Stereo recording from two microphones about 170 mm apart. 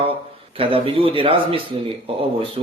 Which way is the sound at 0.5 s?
35° right (ahead or behind).